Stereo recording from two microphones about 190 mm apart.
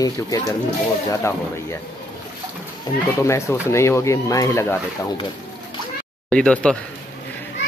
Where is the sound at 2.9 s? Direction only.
50° left (ahead or behind).